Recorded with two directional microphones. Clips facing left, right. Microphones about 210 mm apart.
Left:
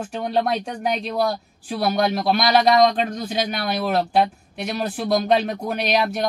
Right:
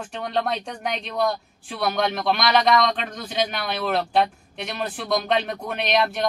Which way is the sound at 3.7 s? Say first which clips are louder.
Left 3 dB; 10° left (ahead or behind).